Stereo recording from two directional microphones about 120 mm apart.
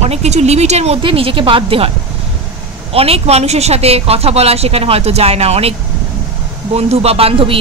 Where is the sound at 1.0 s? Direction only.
50° right (ahead or behind).